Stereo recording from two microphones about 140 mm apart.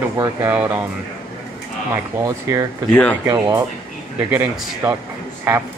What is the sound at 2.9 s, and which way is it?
Speech, 10° left (ahead or behind).